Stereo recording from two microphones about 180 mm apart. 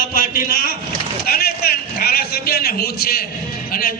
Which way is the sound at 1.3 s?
55° left (ahead or behind).